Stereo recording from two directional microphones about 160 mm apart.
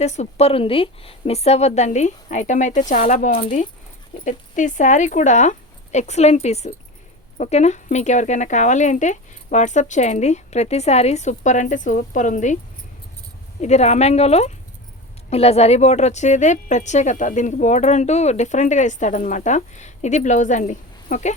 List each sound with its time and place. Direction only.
0.0 s a woman's voice: 45° left (ahead or behind)
13.6 s a woman's voice: 45° left (ahead or behind)